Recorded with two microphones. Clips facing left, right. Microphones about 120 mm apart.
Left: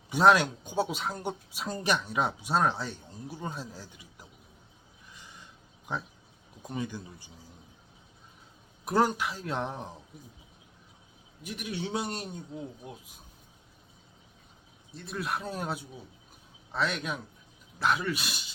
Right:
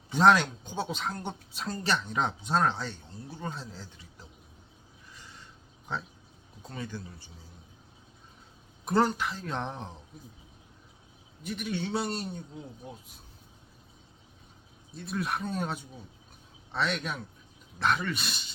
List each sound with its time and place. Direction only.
0.1 s speech: 10° left (ahead or behind)
5.1 s a sound: 15° left (ahead or behind)
5.9 s speech: 15° left (ahead or behind)
8.8 s speech: 10° left (ahead or behind)
11.4 s speech: 10° left (ahead or behind)
14.9 s speech: centre (ahead or behind)